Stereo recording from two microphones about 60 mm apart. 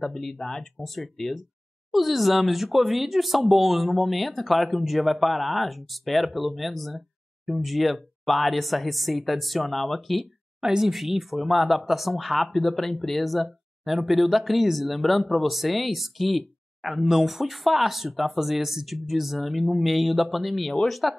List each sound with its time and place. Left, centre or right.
0.0 s speech: centre